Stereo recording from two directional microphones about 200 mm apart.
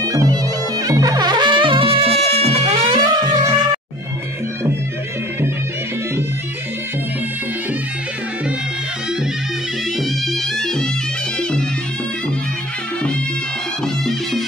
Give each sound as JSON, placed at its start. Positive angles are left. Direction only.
{"t": 0.0, "sound": "music", "side_deg": -15}
{"t": 10.6, "sound": "music", "side_deg": 5}